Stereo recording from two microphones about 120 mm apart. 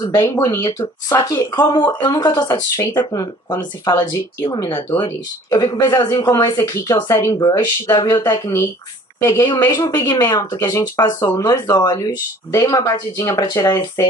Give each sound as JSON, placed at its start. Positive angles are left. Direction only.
{"t": 0.0, "sound": "speech", "side_deg": 30}
{"t": 2.4, "sound": "speech", "side_deg": 20}
{"t": 2.9, "sound": "speech", "side_deg": 35}
{"t": 5.5, "sound": "speech", "side_deg": 35}
{"t": 11.3, "sound": "speech", "side_deg": 25}